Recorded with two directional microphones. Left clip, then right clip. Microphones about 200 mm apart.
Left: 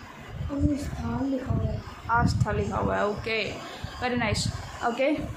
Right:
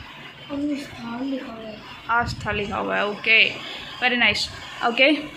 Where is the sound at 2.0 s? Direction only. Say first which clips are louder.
Right 3 dB; 15° right (ahead or behind).